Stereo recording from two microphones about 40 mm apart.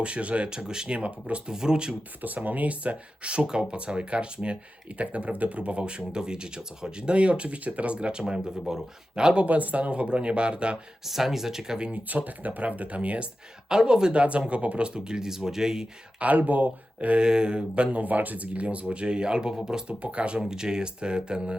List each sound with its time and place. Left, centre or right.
0.0 s speech: right
1.5 s speech: centre
2.2 s speech: right
9.5 s speech: right
11.0 s speech: centre
12.0 s speech: right
13.7 s speech: centre
16.2 s speech: right
17.2 s speech: right
17.9 s speech: right
18.9 s speech: right
19.9 s speech: right